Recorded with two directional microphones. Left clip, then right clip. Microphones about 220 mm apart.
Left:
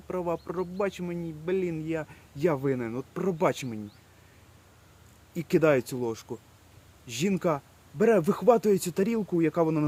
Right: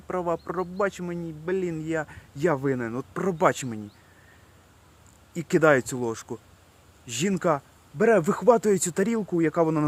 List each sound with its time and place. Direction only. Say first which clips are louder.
0.1 s speech: right 3 dB; 5° right (ahead or behind)
5.3 s speech: right 3 dB; 10° right (ahead or behind)